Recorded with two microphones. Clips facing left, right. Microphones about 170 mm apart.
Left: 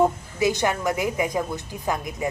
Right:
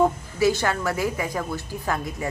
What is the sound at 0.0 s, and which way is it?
A woman's voice, 20° left (ahead or behind).